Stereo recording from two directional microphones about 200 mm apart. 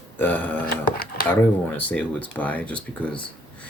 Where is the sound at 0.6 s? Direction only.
50° left (ahead or behind).